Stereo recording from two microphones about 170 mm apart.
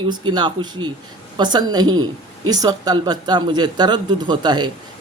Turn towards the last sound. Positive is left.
turn(degrees=-25)  # may be behind; listen again after turning